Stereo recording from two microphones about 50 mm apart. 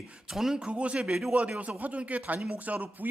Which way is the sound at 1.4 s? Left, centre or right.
Right.